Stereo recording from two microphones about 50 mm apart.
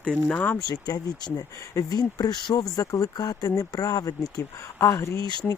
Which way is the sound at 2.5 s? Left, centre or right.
Left.